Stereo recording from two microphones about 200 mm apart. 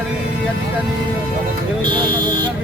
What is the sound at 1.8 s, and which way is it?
Speech, 25° right (ahead or behind).